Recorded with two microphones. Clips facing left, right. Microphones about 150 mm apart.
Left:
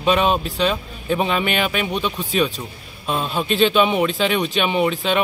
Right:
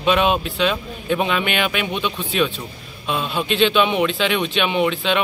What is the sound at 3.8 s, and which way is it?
Speech, 5° left (ahead or behind).